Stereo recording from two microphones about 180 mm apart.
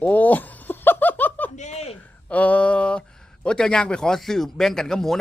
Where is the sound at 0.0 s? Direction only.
10° left (ahead or behind).